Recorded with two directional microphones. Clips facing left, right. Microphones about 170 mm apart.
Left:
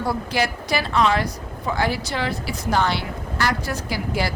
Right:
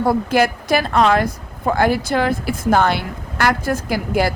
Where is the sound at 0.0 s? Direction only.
50° right (ahead or behind).